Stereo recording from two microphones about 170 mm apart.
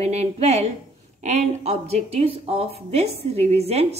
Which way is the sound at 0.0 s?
40° right (ahead or behind).